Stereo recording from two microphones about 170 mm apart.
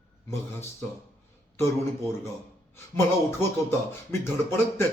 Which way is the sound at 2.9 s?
15° left (ahead or behind).